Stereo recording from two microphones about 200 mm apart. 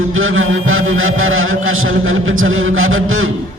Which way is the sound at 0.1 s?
85° right.